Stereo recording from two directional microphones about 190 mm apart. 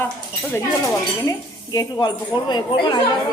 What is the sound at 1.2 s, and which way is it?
A woman's voice, 15° left (ahead or behind).